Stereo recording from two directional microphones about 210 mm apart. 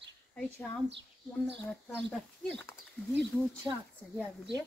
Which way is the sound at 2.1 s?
5° left (ahead or behind).